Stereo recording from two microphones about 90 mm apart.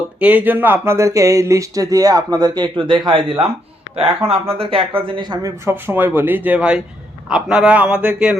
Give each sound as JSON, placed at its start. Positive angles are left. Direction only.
{"t": 0.2, "sound": "speech", "side_deg": -15}
{"t": 4.3, "sound": "speech", "side_deg": -90}
{"t": 4.9, "sound": "speech", "side_deg": -65}
{"t": 5.4, "sound": "speech", "side_deg": -35}
{"t": 5.7, "sound": "a man's voice", "side_deg": -25}